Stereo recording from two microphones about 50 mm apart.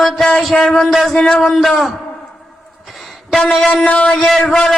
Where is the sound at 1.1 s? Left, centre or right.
Centre.